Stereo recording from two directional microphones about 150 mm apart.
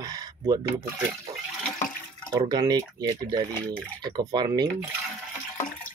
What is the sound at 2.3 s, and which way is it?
Speech, 25° right (ahead or behind).